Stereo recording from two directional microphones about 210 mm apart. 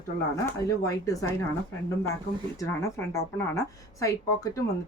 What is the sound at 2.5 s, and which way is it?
A woman's voice, 15° left (ahead or behind).